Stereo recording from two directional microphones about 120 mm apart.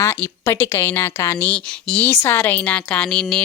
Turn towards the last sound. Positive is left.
turn(degrees=5)  # may be behind; listen again after turning